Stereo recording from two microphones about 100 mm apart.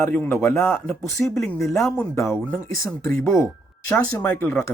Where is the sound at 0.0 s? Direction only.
20° left (ahead or behind).